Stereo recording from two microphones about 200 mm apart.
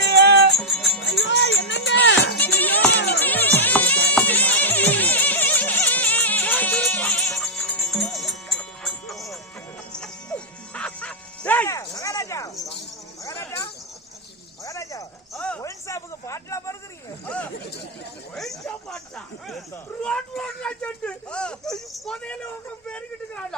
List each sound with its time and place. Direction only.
0.0 s music: 55° right (ahead or behind)
0.5 s music: centre (ahead or behind)
1.2 s music: 65° left (ahead or behind)
2.4 s music: 10° left (ahead or behind)
11.9 s cricket: 15° left (ahead or behind)
13.2 s insect: 15° left (ahead or behind)
14.6 s cricket: 15° left (ahead or behind)
15.3 s a sound: 5° left (ahead or behind)
18.3 s a sound: centre (ahead or behind)